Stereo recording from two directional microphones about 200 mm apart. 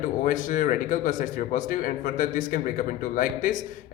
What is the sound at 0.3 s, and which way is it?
A man's voice, 40° left (ahead or behind).